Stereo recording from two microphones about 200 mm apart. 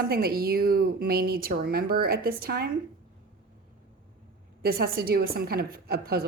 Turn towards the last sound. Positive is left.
turn(degrees=-50)  # may be behind; listen again after turning